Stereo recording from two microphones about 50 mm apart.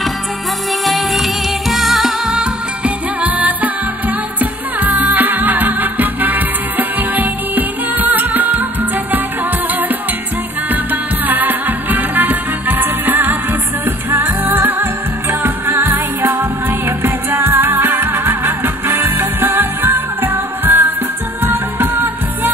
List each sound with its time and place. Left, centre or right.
0.8 s music: centre
2.8 s music: right
10.7 s music: right